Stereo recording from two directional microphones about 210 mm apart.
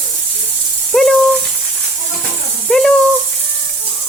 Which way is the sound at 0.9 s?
5° left (ahead or behind).